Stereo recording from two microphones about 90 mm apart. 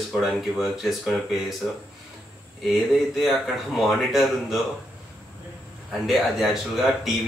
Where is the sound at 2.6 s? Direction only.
Centre (ahead or behind).